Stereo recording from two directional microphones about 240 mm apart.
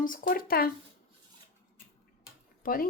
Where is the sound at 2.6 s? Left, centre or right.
Left.